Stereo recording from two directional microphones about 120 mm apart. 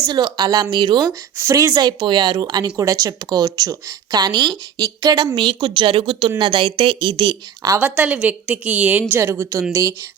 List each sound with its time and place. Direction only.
0.1 s a woman's voice: 40° right (ahead or behind)
1.4 s a woman's voice: 25° right (ahead or behind); by 7.3 s 45° right (ahead or behind)
7.8 s a woman's voice: 15° right (ahead or behind)